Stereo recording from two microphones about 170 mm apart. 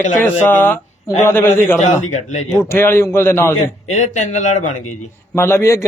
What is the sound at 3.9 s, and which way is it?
Speech, 45° left (ahead or behind).